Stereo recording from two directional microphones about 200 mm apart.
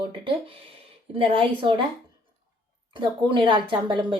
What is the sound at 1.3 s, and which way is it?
Speech, 25° right (ahead or behind).